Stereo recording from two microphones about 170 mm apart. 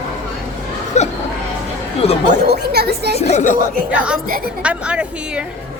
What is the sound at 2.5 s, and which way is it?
Speech, 70° right (ahead or behind).